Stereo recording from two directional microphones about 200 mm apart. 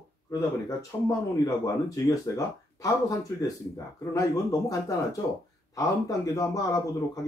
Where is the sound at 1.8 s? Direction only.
15° left (ahead or behind).